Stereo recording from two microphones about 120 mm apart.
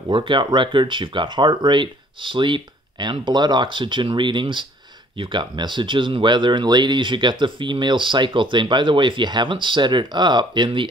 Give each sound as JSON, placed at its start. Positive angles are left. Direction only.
{"t": 0.1, "sound": "speech", "side_deg": -40}